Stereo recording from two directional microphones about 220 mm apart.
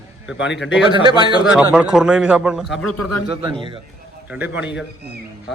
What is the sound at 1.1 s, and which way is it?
Speech, 20° left (ahead or behind).